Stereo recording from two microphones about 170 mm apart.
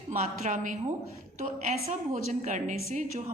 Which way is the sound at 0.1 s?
45° right (ahead or behind).